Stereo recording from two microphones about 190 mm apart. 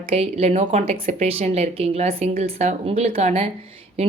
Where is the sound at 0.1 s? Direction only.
30° right (ahead or behind).